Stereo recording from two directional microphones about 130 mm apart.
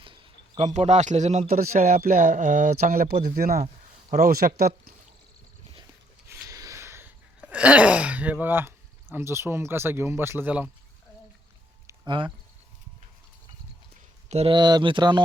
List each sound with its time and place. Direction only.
0.0 s a sound: 40° right (ahead or behind)
0.6 s a man's voice: 60° right (ahead or behind); by 3.7 s 90° right
6.2 s a sound: 20° right (ahead or behind)
7.4 s speech: 10° right (ahead or behind)
12.0 s speech: 40° right (ahead or behind)
14.3 s speech: 55° right (ahead or behind)
14.5 s speech: 35° right (ahead or behind)